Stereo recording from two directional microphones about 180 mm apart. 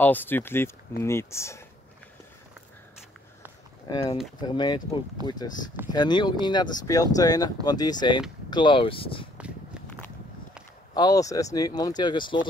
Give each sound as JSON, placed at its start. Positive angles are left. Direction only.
{"t": 0.0, "sound": "speech", "side_deg": 10}
{"t": 4.4, "sound": "speech", "side_deg": 25}
{"t": 11.0, "sound": "speech", "side_deg": 20}